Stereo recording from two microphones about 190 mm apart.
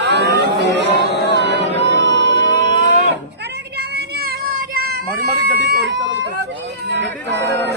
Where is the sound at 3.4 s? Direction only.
60° right (ahead or behind).